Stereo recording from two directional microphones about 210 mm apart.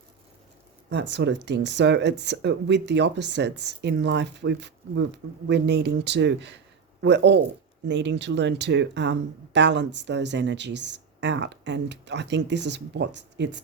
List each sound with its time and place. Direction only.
0.9 s speech: 55° right (ahead or behind)